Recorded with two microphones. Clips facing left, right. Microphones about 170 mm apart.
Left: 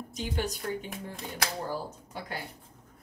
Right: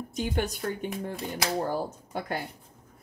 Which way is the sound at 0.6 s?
55° right (ahead or behind).